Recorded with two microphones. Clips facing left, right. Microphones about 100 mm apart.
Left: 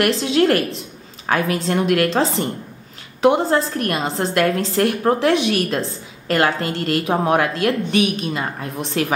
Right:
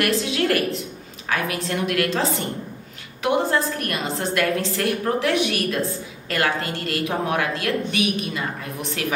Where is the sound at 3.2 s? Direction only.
30° left (ahead or behind).